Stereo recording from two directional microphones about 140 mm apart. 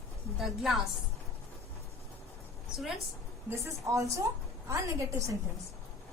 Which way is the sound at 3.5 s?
20° right (ahead or behind).